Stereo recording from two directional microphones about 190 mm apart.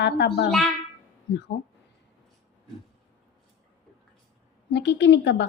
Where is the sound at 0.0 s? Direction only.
65° left (ahead or behind).